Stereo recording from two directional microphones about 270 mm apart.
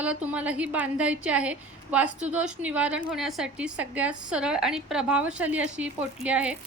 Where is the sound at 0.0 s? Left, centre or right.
Centre.